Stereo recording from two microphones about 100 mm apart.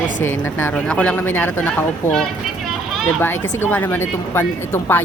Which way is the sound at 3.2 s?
20° left (ahead or behind).